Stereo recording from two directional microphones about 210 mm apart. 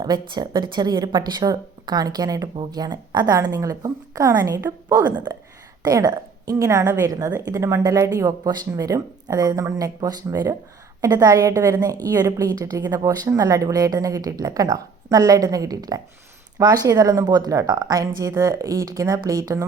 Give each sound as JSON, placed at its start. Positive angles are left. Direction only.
{"t": 0.0, "sound": "a woman's voice", "side_deg": -20}